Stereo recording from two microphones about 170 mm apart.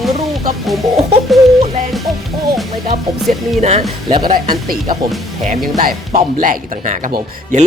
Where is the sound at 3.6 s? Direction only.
40° right (ahead or behind).